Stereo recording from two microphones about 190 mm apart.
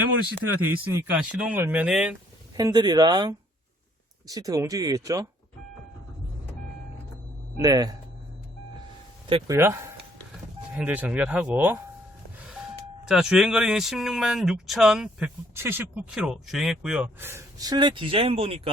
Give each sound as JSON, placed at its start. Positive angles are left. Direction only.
{"t": 0.7, "sound": "speech", "side_deg": -10}
{"t": 2.6, "sound": "speech", "side_deg": -20}
{"t": 7.5, "sound": "speech", "side_deg": -20}
{"t": 9.5, "sound": "speech", "side_deg": -15}
{"t": 13.1, "sound": "speech", "side_deg": -5}